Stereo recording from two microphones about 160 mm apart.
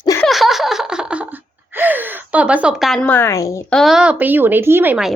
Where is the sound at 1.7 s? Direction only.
10° right (ahead or behind).